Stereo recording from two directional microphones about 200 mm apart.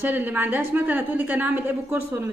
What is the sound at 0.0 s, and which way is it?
A woman's voice, 10° right (ahead or behind).